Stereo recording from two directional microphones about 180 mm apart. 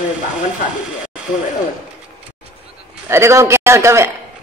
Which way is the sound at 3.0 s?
15° right (ahead or behind).